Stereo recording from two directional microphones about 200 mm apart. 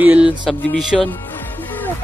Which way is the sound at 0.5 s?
5° left (ahead or behind).